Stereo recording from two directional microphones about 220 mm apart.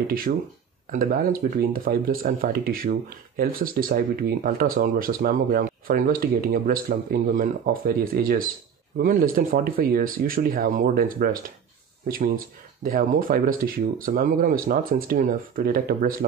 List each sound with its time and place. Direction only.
0.3 s speech: 45° right (ahead or behind)